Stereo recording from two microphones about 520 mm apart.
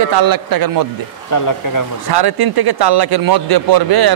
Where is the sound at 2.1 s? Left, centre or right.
Right.